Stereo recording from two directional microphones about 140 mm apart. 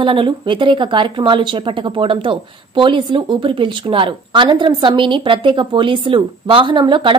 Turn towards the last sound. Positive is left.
turn(degrees=-35)  # may be behind; listen again after turning